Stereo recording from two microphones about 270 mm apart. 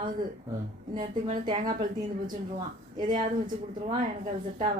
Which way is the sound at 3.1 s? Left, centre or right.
Right.